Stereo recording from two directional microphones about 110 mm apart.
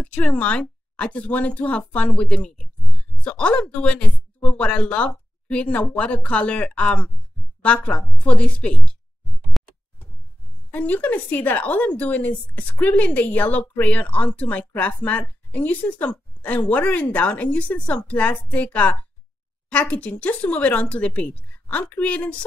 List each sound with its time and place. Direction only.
0.0 s speech: 10° left (ahead or behind)
9.6 s a sound: centre (ahead or behind)
10.7 s speech: 15° left (ahead or behind)